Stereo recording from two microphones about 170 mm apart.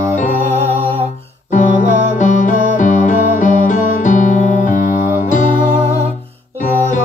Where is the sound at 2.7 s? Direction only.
50° left (ahead or behind).